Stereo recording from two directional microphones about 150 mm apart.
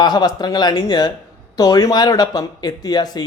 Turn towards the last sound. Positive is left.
turn(degrees=25)  # may be behind; listen again after turning